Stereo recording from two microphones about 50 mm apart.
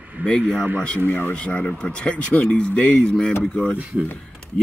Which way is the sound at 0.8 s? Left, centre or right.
Left.